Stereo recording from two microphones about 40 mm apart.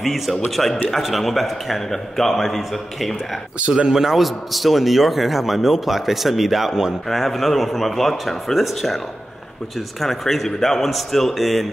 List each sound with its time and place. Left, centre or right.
0.0 s a man's voice: centre
3.5 s speech: right
3.8 s a man's voice: centre
7.1 s a man's voice: centre